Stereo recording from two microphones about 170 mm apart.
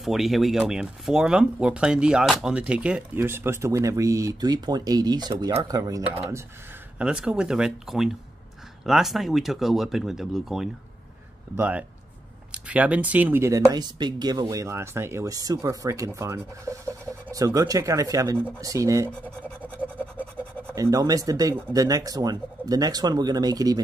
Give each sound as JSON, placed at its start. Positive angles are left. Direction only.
{"t": 0.0, "sound": "speech", "side_deg": 0}
{"t": 7.0, "sound": "speech", "side_deg": -5}
{"t": 19.6, "sound": "a sound", "side_deg": -10}
{"t": 20.7, "sound": "speech", "side_deg": -20}